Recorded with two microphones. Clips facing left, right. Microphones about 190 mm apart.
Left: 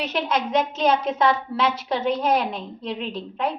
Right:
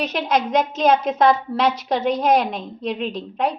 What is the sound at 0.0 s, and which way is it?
A woman's voice, 40° right (ahead or behind).